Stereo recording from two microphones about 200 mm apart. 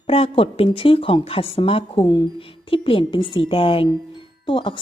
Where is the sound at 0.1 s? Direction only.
30° left (ahead or behind).